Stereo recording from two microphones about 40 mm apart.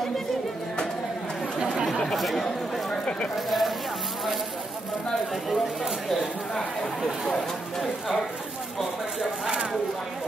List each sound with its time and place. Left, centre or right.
2.1 s speech: centre
2.4 s speech: left
3.3 s speech: centre
7.3 s speech: centre
9.2 s speech: right